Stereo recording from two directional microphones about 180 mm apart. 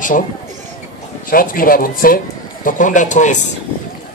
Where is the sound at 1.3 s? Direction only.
50° left (ahead or behind).